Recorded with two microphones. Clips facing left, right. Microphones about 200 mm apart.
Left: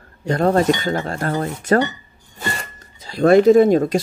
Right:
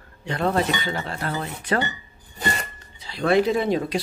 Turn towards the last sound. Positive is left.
turn(degrees=45)  # may be behind; listen again after turning